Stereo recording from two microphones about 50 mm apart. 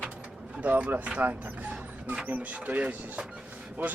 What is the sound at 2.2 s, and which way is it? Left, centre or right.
Speech, right.